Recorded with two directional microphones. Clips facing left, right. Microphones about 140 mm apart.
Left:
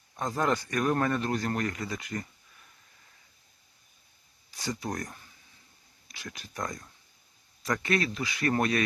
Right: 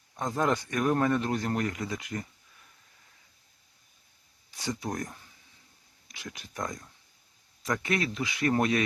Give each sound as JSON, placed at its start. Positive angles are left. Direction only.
{"t": 0.2, "sound": "speech", "side_deg": -15}
{"t": 4.5, "sound": "speech", "side_deg": -15}